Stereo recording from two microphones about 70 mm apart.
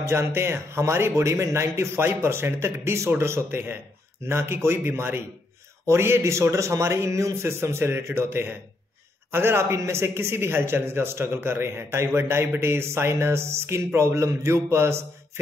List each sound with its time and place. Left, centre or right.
0.0 s a man's voice: right